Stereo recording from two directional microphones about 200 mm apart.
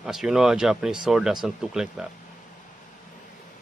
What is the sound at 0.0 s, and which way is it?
Speech, centre (ahead or behind).